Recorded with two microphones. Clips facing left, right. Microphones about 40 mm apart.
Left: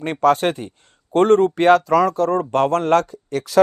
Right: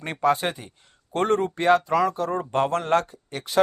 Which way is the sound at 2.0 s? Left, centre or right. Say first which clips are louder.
Left 7 dB; left.